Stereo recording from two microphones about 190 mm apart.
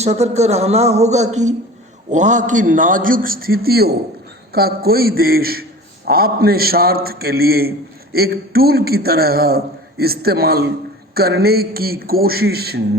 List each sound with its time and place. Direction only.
0.0 s a man's voice: 35° right (ahead or behind); by 12.8 s 55° right (ahead or behind)